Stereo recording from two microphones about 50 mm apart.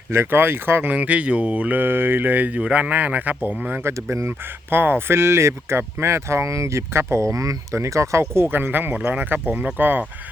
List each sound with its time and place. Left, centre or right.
0.3 s speech: right
0.9 s speech: right
1.8 s speech: right
2.6 s speech: right
3.8 s speech: right
4.7 s speech: right
8.4 s speech: right